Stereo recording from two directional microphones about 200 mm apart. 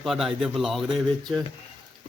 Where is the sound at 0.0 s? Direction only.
Centre (ahead or behind).